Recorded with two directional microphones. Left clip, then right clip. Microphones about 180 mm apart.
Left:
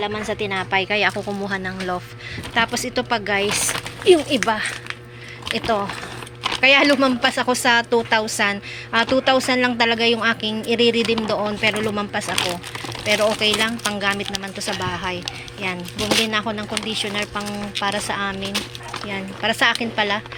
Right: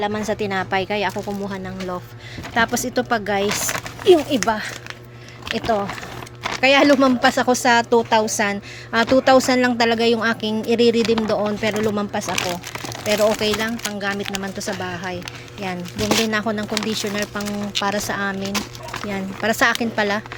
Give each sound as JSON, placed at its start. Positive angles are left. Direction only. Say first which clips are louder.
{"t": 0.0, "sound": "speech", "louder": "right 1 dB", "side_deg": -35}
{"t": 0.9, "sound": "speech", "louder": "left 3 dB", "side_deg": -10}
{"t": 2.6, "sound": "speech", "louder": "right 1 dB", "side_deg": -25}
{"t": 16.2, "sound": "speech", "louder": "even", "side_deg": -30}